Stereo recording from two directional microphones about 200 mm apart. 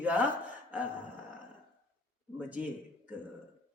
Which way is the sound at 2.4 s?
5° right (ahead or behind).